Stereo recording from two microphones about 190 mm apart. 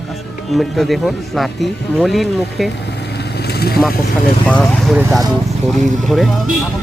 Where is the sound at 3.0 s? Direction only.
60° left (ahead or behind).